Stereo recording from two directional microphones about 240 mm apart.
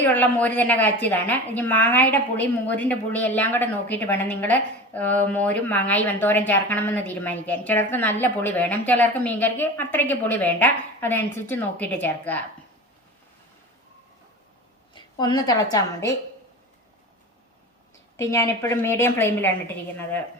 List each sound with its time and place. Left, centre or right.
0.0 s a woman's voice: centre
14.9 s a woman's voice: centre
18.2 s a woman's voice: centre